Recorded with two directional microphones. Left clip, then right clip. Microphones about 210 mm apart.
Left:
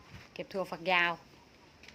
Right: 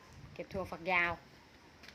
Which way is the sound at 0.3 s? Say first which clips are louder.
Left 4 dB; 20° left (ahead or behind).